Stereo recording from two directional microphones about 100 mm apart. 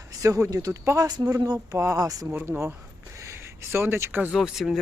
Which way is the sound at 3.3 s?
25° right (ahead or behind).